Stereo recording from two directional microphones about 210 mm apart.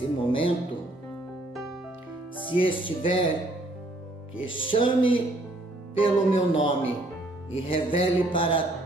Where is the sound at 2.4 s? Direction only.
25° left (ahead or behind).